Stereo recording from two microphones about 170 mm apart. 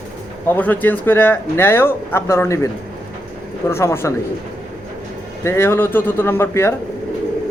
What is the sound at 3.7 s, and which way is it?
Speech, 15° left (ahead or behind).